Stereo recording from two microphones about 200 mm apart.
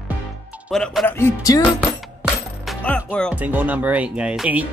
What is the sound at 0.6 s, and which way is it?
Speech, centre (ahead or behind).